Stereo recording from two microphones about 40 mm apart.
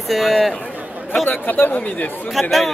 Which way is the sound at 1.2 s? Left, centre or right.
Left.